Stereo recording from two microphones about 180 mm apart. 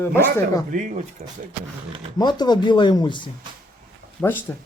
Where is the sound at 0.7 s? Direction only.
45° right (ahead or behind).